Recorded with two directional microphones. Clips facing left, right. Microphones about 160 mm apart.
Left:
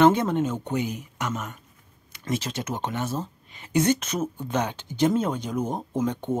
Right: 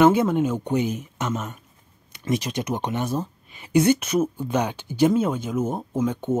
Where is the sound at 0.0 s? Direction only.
10° right (ahead or behind).